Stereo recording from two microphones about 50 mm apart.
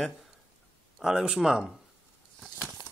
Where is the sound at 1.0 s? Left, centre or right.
Centre.